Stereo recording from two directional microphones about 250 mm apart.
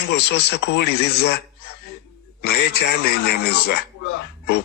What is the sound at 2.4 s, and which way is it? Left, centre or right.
Speech, left.